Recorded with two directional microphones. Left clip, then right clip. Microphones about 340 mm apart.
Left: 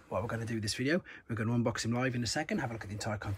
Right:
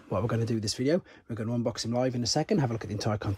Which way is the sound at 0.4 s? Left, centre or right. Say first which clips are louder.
Right 5 dB; centre.